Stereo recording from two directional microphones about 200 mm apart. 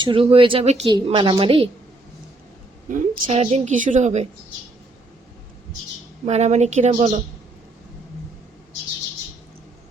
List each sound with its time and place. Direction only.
0.0 s speech: 25° right (ahead or behind)
2.9 s a woman's voice: 30° right (ahead or behind)
6.2 s a woman's voice: 35° right (ahead or behind)